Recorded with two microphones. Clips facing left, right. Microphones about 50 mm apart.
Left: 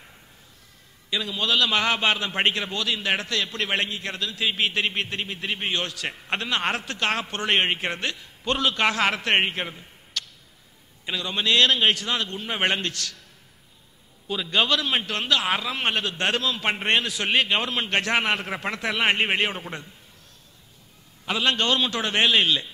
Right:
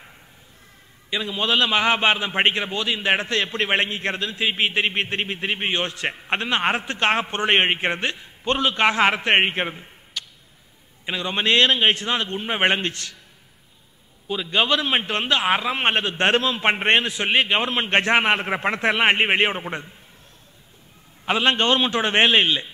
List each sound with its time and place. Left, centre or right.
1.1 s a man's voice: right
10.1 s tick-tock: centre
11.1 s a man's voice: right
14.2 s a man's voice: centre; by 19.9 s right
21.3 s a man's voice: right